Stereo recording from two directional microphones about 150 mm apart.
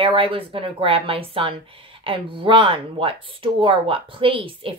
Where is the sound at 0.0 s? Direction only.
35° right (ahead or behind).